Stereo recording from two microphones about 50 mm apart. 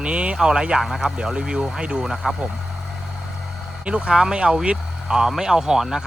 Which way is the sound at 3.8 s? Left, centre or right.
Right.